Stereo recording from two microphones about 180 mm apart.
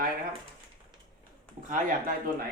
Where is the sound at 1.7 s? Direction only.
45° right (ahead or behind).